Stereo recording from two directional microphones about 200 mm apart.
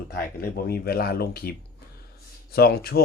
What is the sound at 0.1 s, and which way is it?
Speech, 50° left (ahead or behind).